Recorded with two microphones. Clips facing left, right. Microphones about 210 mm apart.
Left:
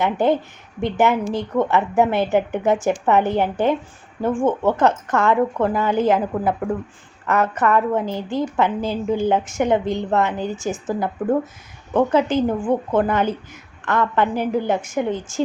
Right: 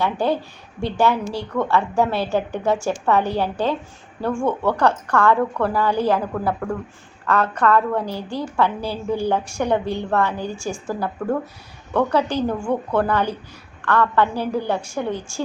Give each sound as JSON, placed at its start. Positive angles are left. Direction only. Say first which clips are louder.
{"t": 0.0, "sound": "a woman's voice", "louder": "left 3 dB", "side_deg": 20}